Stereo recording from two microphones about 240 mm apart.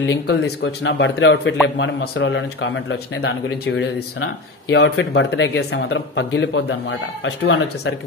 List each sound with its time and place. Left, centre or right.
0.0 s speech: left